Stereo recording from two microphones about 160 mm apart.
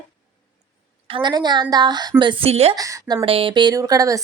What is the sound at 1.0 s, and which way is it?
Speech, 30° right (ahead or behind).